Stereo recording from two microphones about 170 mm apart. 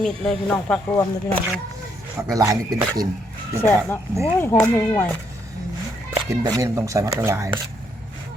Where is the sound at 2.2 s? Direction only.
20° right (ahead or behind).